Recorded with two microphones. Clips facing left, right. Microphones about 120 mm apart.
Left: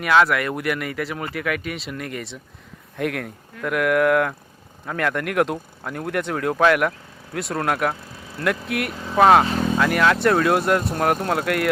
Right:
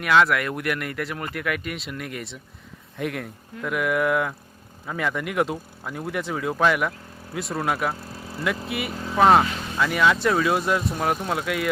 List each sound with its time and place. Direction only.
0.0 s speech: centre (ahead or behind)